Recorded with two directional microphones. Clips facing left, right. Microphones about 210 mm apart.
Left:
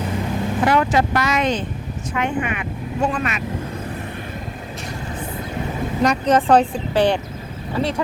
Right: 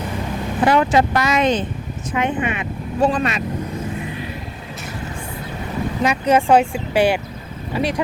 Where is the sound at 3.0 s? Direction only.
35° right (ahead or behind).